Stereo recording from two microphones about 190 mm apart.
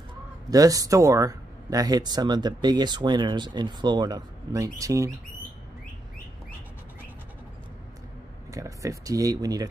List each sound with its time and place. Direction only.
0.5 s speech: 20° right (ahead or behind)
8.5 s speech: 15° right (ahead or behind)